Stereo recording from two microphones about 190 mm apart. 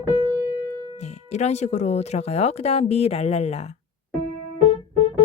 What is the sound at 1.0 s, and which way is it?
Speech, 35° left (ahead or behind).